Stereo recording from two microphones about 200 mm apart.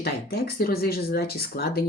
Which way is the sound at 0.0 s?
50° left (ahead or behind).